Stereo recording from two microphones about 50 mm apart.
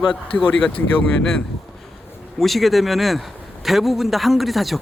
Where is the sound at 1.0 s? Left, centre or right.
Centre.